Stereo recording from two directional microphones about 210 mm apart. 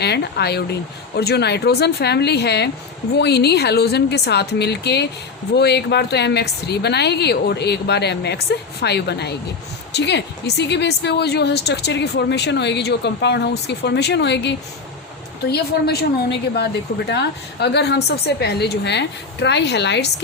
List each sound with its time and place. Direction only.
0.0 s a woman's voice: 50° left (ahead or behind)